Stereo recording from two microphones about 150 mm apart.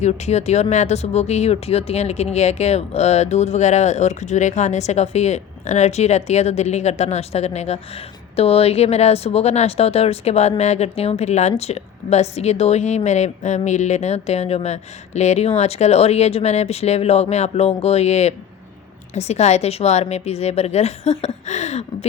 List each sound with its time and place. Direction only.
0.0 s speech: 50° left (ahead or behind)